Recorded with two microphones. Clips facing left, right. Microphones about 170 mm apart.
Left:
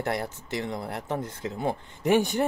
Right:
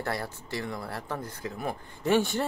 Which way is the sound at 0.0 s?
20° left (ahead or behind).